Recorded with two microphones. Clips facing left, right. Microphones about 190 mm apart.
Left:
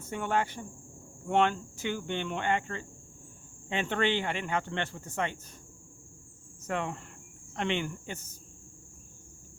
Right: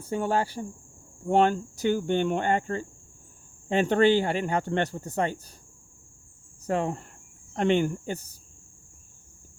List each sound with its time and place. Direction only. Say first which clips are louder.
0.0 s speech: right 4 dB; 35° right (ahead or behind)
6.7 s speech: right 6 dB; 35° right (ahead or behind)